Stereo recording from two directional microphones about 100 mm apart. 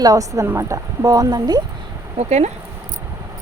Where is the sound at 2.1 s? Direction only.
90° right.